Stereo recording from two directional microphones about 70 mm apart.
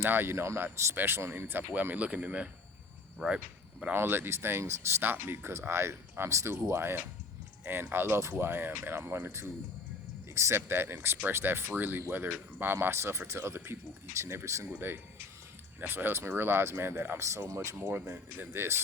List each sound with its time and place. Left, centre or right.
0.0 s speech: right; by 3.9 s centre
3.9 s speech: right
14.7 s speech: right
17.2 s speech: right
17.7 s speech: right